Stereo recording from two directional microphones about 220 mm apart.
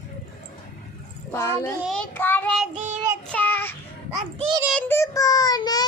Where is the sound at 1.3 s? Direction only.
15° left (ahead or behind).